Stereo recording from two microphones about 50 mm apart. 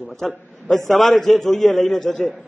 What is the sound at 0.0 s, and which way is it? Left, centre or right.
A man's voice, centre.